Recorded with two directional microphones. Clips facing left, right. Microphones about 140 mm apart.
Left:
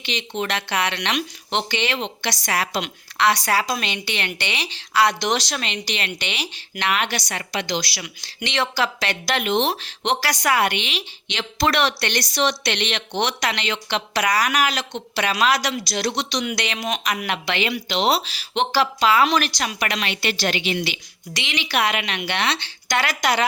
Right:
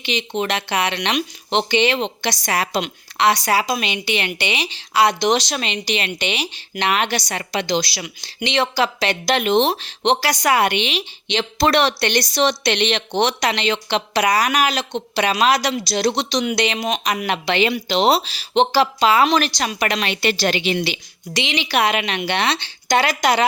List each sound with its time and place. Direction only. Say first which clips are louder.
0.0 s a woman's voice: right 4 dB; 15° right (ahead or behind)